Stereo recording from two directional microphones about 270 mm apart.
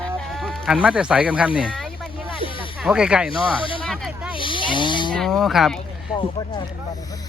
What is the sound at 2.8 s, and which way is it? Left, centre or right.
Speech, centre.